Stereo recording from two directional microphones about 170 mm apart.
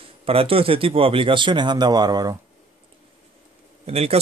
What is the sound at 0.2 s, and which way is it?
Speech, 35° right (ahead or behind).